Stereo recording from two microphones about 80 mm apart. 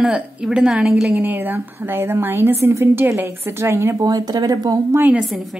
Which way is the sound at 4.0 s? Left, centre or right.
Right.